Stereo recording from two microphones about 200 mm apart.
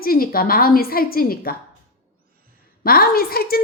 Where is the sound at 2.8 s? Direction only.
50° left (ahead or behind).